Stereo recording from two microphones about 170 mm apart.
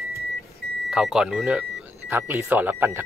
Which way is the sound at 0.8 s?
5° right (ahead or behind).